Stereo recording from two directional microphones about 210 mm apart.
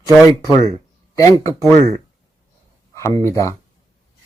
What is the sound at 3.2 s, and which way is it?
Speech, 15° left (ahead or behind).